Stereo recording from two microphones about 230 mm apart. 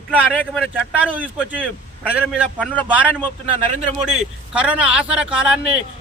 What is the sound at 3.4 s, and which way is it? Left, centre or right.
Speech, right.